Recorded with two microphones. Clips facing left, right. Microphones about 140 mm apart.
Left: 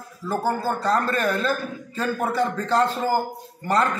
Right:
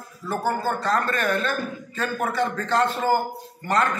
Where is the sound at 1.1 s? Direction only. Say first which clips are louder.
Left 1 dB; 35° left (ahead or behind).